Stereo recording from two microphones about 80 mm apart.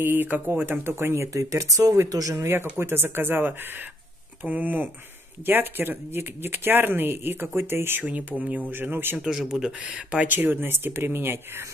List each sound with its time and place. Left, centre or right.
0.0 s speech: right
2.8 s speech: right
9.2 s speech: centre
10.2 s speech: right